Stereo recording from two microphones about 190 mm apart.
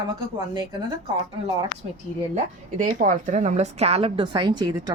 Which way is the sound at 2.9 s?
40° right (ahead or behind).